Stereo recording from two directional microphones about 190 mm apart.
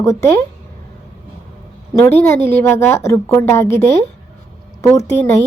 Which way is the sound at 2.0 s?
10° left (ahead or behind).